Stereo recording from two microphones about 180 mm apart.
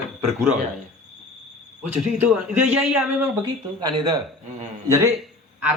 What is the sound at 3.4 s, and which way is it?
Speech, 25° right (ahead or behind).